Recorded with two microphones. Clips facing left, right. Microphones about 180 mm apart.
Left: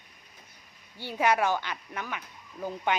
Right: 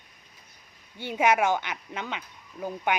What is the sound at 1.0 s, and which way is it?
Speech, 20° right (ahead or behind).